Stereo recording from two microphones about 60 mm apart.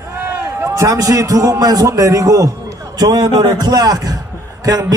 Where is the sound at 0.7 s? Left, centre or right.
Right.